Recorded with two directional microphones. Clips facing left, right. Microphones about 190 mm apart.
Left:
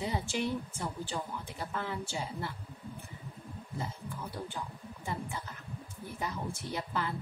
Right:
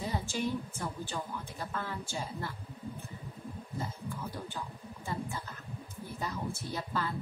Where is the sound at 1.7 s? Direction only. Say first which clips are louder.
Left 2 dB; 15° left (ahead or behind).